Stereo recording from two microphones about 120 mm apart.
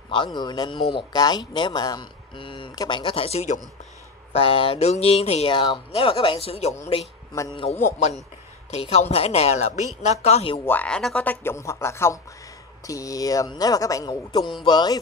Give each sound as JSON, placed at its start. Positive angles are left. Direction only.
{"t": 0.1, "sound": "speech", "side_deg": 40}
{"t": 4.3, "sound": "a woman's voice", "side_deg": 55}
{"t": 10.7, "sound": "speech", "side_deg": 10}
{"t": 11.2, "sound": "speech", "side_deg": 20}